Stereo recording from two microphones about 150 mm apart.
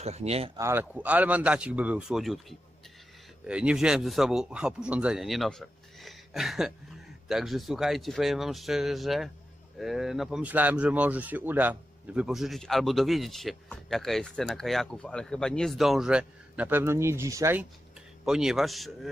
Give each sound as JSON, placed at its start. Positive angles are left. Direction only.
{"t": 0.0, "sound": "speech", "side_deg": -45}
{"t": 0.6, "sound": "speech", "side_deg": -15}
{"t": 3.4, "sound": "speech", "side_deg": -5}
{"t": 18.2, "sound": "speech", "side_deg": -5}